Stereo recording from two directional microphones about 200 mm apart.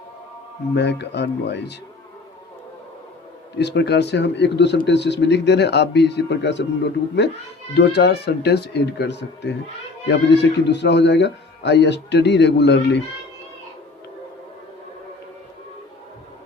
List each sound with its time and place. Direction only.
0.7 s speech: 55° left (ahead or behind)
3.6 s speech: 55° left (ahead or behind)
7.7 s speech: 55° left (ahead or behind)